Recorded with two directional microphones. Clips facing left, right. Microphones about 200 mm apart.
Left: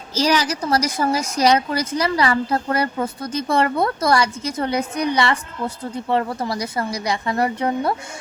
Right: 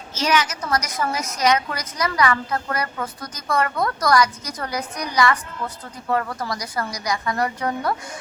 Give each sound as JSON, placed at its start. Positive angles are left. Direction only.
{"t": 0.1, "sound": "a woman's voice", "side_deg": 35}